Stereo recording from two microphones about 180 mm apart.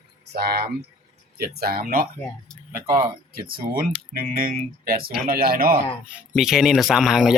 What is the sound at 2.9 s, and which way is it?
Speech, 25° right (ahead or behind).